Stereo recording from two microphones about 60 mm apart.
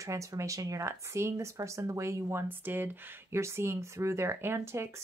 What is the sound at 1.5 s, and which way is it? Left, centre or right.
Speech, right.